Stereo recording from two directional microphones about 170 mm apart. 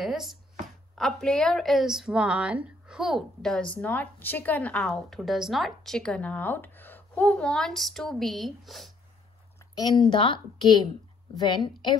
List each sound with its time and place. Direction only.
0.0 s a sound: centre (ahead or behind)
0.9 s a woman's voice: 5° left (ahead or behind)
9.6 s a woman's voice: 25° left (ahead or behind)